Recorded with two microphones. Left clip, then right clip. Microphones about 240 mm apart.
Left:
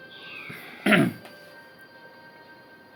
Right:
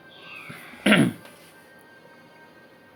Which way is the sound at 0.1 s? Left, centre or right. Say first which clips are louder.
Even; centre.